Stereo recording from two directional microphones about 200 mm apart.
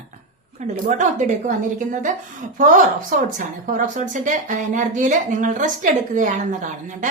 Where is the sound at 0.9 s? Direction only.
35° right (ahead or behind).